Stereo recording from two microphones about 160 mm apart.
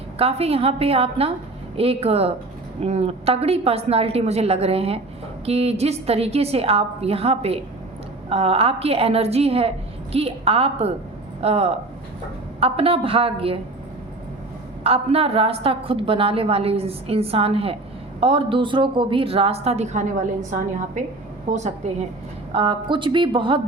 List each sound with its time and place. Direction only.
0.2 s a woman's voice: 40° right (ahead or behind)
14.8 s a woman's voice: 40° right (ahead or behind)
21.5 s a woman's voice: 50° right (ahead or behind)
22.5 s a woman's voice: 30° right (ahead or behind)